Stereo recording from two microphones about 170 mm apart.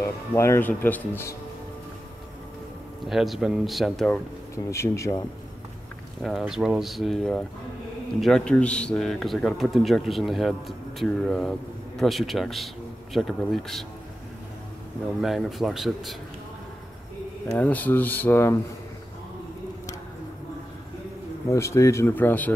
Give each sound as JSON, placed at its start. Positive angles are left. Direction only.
{"t": 0.0, "sound": "speech", "side_deg": 15}
{"t": 3.1, "sound": "speech", "side_deg": 0}
{"t": 4.6, "sound": "speech", "side_deg": 15}
{"t": 6.2, "sound": "speech", "side_deg": 0}
{"t": 15.1, "sound": "speech", "side_deg": 0}
{"t": 17.5, "sound": "speech", "side_deg": 10}
{"t": 21.5, "sound": "speech", "side_deg": 15}